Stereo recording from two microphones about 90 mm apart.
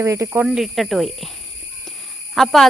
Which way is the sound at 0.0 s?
35° right (ahead or behind).